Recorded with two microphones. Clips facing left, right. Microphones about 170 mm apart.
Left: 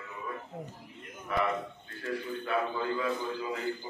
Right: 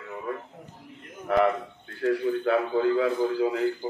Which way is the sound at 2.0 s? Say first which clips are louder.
Right 11 dB; 70° right (ahead or behind).